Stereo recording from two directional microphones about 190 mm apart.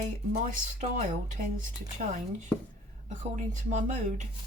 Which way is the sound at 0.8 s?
40° right (ahead or behind).